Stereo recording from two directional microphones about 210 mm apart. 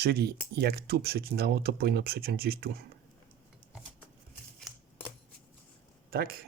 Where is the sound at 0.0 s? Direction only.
50° right (ahead or behind).